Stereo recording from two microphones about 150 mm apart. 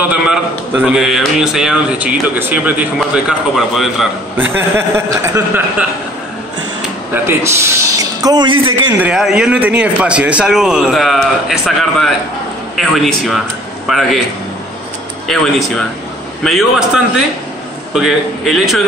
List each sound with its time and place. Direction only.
0.0 s a man's voice: 10° right (ahead or behind)
4.4 s speech: 15° right (ahead or behind)
7.2 s speech: 15° right (ahead or behind)
8.9 s a man's voice: 5° right (ahead or behind)
15.3 s a man's voice: centre (ahead or behind)